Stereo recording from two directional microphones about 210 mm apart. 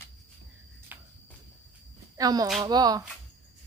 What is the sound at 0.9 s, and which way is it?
Cricket, 10° right (ahead or behind).